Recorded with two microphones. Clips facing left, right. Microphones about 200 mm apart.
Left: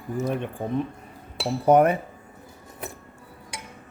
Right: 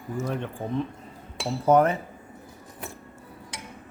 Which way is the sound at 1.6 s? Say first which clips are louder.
Left 2 dB; 15° left (ahead or behind).